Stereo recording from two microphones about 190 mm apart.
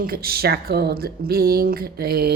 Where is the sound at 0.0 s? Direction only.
50° right (ahead or behind).